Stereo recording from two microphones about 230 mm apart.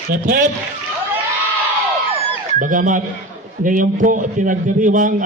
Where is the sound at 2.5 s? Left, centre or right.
Right.